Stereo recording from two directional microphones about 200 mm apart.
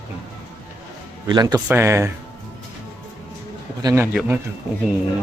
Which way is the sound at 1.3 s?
20° right (ahead or behind).